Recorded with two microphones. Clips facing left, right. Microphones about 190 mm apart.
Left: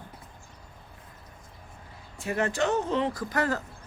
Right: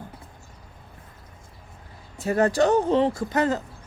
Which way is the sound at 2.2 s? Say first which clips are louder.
Right 7 dB; 40° right (ahead or behind).